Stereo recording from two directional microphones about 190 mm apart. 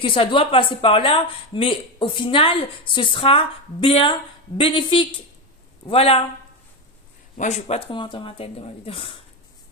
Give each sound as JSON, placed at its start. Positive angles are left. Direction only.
{"t": 0.0, "sound": "a woman's voice", "side_deg": 25}
{"t": 7.3, "sound": "a woman's voice", "side_deg": 35}